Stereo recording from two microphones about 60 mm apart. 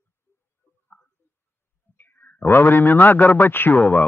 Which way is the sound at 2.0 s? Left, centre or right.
Left.